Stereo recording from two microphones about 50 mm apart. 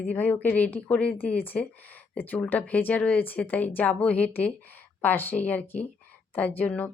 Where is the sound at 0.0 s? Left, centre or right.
Left.